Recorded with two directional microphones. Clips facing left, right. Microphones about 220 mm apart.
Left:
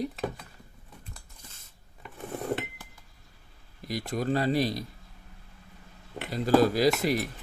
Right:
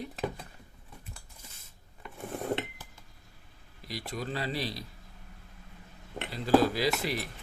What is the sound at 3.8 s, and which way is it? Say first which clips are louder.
Speech: left 7 dB; 45° left (ahead or behind).